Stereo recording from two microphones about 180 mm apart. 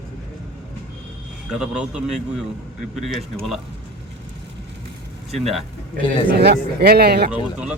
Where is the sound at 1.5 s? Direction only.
5° right (ahead or behind).